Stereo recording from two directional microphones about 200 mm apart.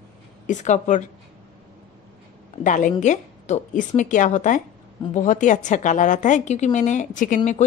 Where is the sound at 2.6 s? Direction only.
40° left (ahead or behind).